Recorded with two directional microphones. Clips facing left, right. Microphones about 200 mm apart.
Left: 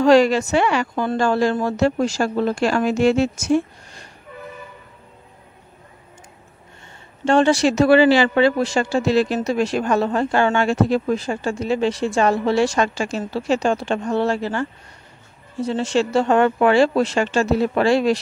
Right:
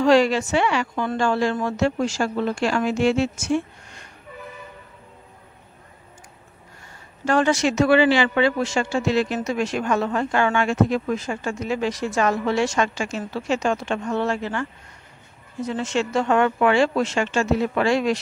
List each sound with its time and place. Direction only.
0.0 s speech: 40° left (ahead or behind)
7.2 s speech: 30° left (ahead or behind)